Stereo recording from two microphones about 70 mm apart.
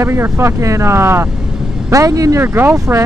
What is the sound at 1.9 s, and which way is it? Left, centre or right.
Speech, right.